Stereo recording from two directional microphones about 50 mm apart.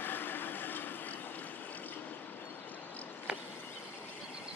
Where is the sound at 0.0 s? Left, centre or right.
Left.